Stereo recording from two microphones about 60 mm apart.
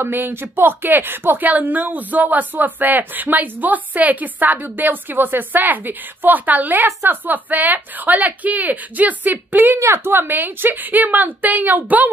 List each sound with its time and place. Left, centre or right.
0.0 s speech: right
9.8 s a woman's voice: right
10.1 s a woman's voice: right